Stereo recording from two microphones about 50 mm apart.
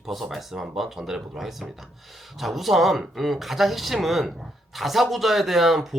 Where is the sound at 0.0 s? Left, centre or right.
Centre.